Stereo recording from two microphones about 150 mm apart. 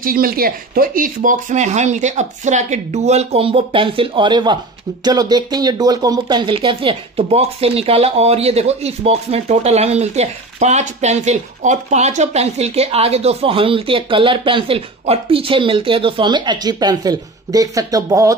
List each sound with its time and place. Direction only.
0.0 s speech: 75° right (ahead or behind); by 18.3 s 20° right (ahead or behind)